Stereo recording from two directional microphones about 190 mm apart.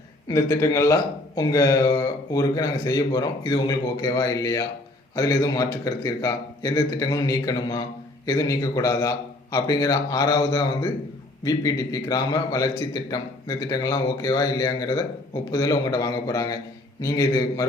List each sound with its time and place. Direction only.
0.3 s a man's voice: 15° left (ahead or behind)